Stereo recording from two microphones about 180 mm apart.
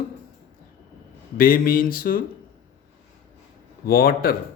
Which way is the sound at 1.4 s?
50° left (ahead or behind).